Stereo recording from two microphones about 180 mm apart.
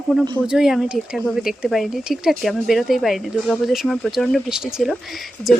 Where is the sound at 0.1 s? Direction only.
Centre (ahead or behind).